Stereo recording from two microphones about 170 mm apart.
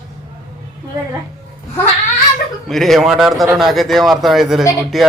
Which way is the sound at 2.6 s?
Centre (ahead or behind).